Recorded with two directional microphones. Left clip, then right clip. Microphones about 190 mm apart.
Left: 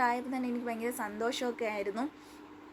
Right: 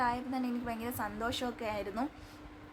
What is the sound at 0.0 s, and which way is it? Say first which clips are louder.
A woman's voice: left 2 dB; 20° left (ahead or behind).